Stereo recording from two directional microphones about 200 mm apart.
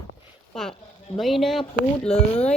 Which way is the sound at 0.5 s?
Centre (ahead or behind).